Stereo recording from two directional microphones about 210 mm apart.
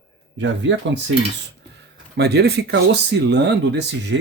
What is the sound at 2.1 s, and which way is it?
Speech, 50° right (ahead or behind).